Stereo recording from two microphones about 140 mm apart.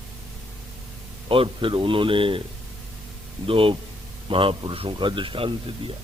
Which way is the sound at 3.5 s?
40° right (ahead or behind).